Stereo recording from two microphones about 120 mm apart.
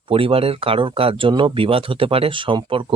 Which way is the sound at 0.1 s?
50° right (ahead or behind).